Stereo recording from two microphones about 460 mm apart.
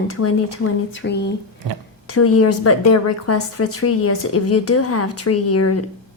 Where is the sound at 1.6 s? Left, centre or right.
Right.